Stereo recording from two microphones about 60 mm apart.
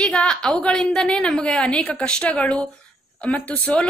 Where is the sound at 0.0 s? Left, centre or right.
Centre.